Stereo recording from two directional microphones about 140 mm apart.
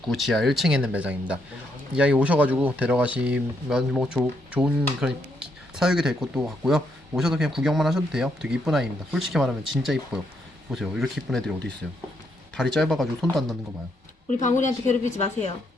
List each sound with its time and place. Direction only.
0.0 s speech: centre (ahead or behind)
12.5 s speech: 5° left (ahead or behind)
14.4 s a woman's voice: 60° left (ahead or behind)